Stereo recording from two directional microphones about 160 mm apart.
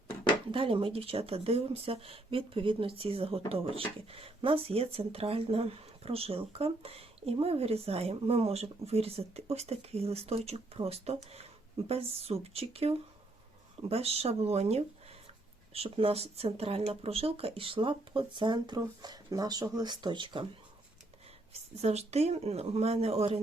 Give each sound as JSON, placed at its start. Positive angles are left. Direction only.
{"t": 0.5, "sound": "speech", "side_deg": -35}
{"t": 21.5, "sound": "speech", "side_deg": -40}